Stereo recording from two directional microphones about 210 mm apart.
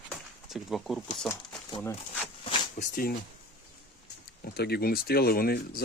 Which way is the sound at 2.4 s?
25° left (ahead or behind).